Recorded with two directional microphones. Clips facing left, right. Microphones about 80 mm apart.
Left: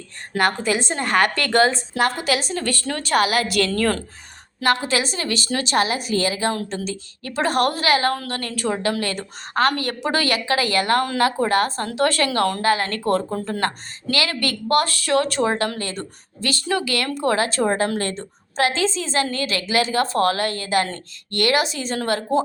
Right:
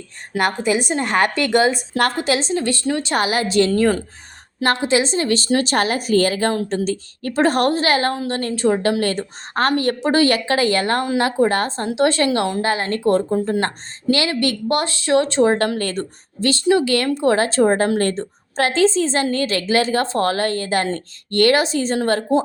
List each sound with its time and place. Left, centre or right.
0.3 s a woman's voice: centre
2.2 s speech: right
3.2 s speech: right
3.8 s a woman's voice: centre
4.8 s a woman's voice: right